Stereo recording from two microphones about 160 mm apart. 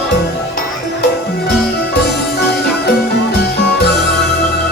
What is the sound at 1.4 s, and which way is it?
Music, 85° left.